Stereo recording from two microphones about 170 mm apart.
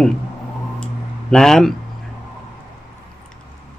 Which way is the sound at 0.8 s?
5° left (ahead or behind).